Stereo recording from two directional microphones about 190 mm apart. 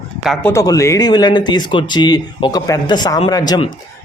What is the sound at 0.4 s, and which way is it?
Speech, 15° left (ahead or behind).